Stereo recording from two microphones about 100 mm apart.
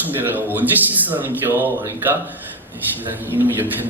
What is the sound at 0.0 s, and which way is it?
A man's voice, 20° right (ahead or behind).